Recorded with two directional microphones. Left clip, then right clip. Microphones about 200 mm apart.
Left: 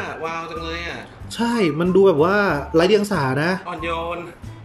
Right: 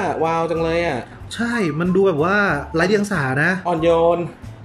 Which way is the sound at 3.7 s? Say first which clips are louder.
Right 10 dB; 30° right (ahead or behind).